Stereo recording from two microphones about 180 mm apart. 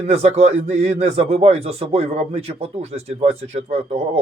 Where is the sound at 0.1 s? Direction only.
35° right (ahead or behind).